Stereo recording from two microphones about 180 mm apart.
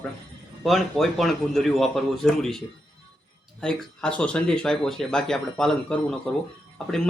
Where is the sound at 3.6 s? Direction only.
5° left (ahead or behind).